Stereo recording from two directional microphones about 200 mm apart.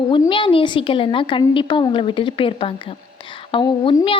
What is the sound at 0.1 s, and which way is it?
A woman's voice, 25° left (ahead or behind).